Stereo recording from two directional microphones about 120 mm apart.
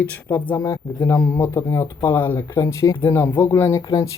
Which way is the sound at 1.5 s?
25° left (ahead or behind).